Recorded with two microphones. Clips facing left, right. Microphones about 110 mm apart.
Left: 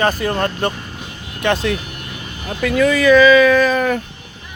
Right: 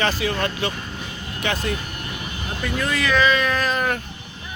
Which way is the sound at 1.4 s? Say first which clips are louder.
Left 7 dB; 70° left (ahead or behind).